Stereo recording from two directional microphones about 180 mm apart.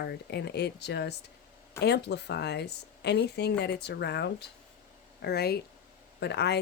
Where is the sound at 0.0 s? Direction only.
70° left (ahead or behind).